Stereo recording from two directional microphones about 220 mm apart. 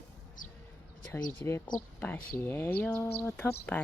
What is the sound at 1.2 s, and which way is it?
Speech, 15° left (ahead or behind).